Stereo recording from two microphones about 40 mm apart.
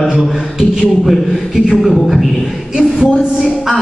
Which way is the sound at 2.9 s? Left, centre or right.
Centre.